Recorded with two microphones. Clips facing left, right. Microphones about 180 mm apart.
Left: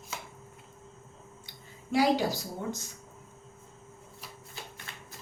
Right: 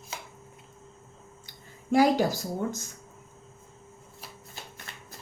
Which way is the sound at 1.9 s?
45° right (ahead or behind).